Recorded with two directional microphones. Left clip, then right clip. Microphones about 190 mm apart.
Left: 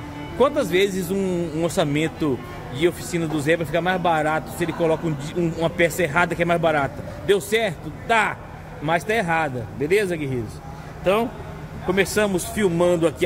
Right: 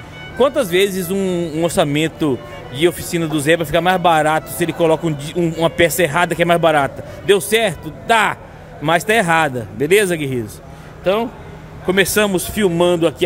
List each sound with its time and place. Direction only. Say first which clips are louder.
0.4 s speech: right 4 dB; 20° right (ahead or behind)
11.9 s speech: right 5 dB; 30° right (ahead or behind)